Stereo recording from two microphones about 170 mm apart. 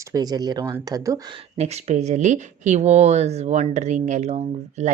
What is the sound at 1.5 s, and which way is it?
Speech, 40° right (ahead or behind).